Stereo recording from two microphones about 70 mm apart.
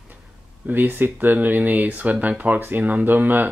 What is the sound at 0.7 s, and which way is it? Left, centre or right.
Speech, right.